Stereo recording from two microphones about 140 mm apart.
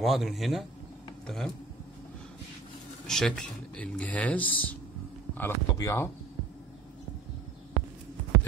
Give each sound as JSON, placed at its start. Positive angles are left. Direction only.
{"t": 0.0, "sound": "a man's voice", "side_deg": 0}
{"t": 3.1, "sound": "speech", "side_deg": 5}